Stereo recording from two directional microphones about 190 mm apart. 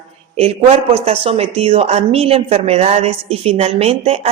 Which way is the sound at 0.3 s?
35° right (ahead or behind).